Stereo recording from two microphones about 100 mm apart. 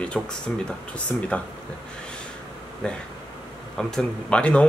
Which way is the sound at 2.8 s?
10° left (ahead or behind).